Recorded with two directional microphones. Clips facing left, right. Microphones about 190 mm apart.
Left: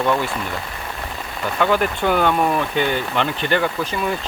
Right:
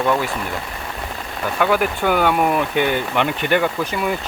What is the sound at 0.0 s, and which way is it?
Speech, 5° right (ahead or behind).